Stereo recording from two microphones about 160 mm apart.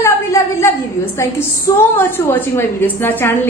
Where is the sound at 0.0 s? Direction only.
15° left (ahead or behind).